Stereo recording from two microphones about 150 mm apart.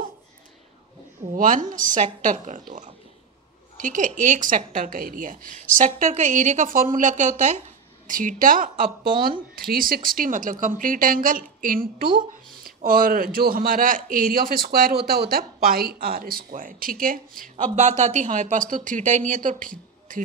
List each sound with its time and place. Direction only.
1.3 s speech: 60° right (ahead or behind)